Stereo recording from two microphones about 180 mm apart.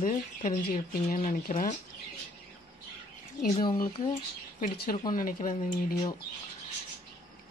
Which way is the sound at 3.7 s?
50° left (ahead or behind).